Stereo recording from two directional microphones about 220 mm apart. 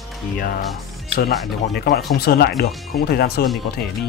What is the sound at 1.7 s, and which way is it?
Speech, 45° left (ahead or behind).